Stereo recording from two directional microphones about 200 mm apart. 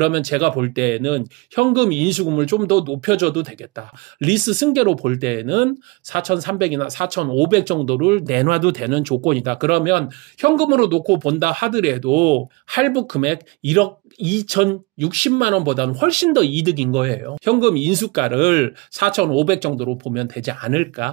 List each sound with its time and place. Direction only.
0.0 s speech: 45° right (ahead or behind)